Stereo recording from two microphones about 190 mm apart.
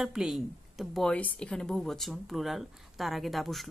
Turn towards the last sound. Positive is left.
turn(degrees=0)  # may be behind; listen again after turning